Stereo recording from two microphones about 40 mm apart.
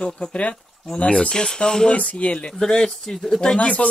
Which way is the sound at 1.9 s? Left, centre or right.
Left.